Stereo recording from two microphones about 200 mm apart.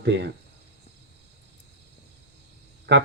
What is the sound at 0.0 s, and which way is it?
Speech, 60° right (ahead or behind).